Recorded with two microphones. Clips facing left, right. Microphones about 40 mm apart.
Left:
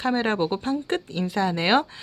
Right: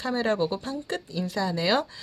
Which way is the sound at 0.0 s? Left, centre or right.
Left.